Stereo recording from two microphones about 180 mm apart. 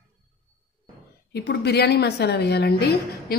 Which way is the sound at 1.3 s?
65° left (ahead or behind).